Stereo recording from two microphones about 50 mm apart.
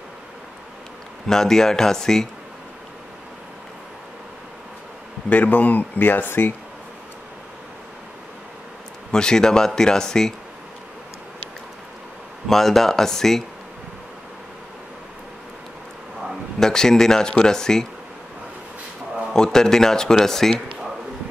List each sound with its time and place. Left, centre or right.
1.2 s speech: centre
5.3 s speech: left
9.1 s speech: centre
12.4 s speech: centre
16.5 s speech: centre
19.3 s speech: centre